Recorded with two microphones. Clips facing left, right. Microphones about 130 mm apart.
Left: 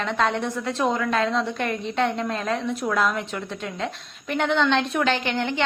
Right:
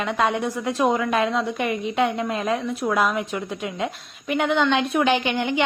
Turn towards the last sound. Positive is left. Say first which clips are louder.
# right 3 dB
turn(degrees=-15)  # may be behind; listen again after turning